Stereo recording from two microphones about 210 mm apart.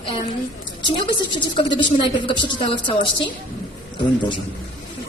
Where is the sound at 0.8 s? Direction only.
25° left (ahead or behind).